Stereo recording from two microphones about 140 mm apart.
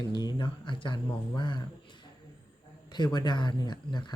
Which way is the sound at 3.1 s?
30° left (ahead or behind).